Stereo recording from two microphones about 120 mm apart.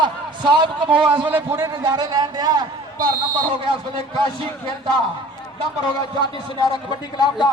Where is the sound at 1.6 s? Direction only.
30° right (ahead or behind).